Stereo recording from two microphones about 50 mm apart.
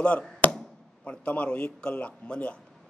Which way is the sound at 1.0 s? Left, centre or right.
Left.